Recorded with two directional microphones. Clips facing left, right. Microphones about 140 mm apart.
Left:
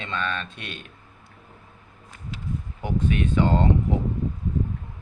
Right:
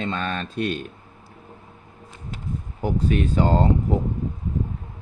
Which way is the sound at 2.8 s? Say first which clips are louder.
Right 3 dB; 35° right (ahead or behind).